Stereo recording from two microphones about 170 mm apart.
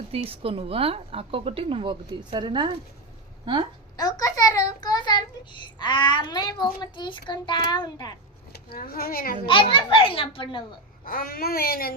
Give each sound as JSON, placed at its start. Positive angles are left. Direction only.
{"t": 0.1, "sound": "speech", "side_deg": -35}
{"t": 3.9, "sound": "a sound", "side_deg": 20}
{"t": 5.8, "sound": "a child's voice", "side_deg": 25}
{"t": 8.5, "sound": "speech", "side_deg": 60}
{"t": 9.5, "sound": "a child's voice", "side_deg": 30}
{"t": 11.0, "sound": "speech", "side_deg": 60}